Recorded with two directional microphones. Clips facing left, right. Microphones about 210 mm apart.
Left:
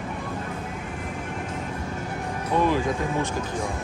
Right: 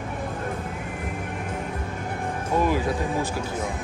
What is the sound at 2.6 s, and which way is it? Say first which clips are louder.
Speech: left 1 dB; 10° right (ahead or behind).